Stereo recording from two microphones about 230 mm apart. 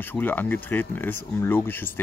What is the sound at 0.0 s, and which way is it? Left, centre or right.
Speech, centre.